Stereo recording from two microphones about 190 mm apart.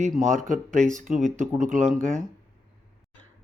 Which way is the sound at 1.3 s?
40° right (ahead or behind).